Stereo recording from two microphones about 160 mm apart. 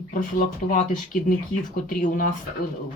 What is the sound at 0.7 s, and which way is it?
Speech, 60° left (ahead or behind).